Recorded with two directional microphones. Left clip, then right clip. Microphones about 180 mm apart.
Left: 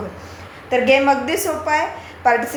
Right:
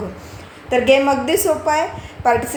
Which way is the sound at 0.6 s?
50° right (ahead or behind).